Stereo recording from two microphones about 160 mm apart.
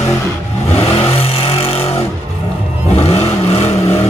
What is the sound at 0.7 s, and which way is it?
Vehicle, 40° left (ahead or behind).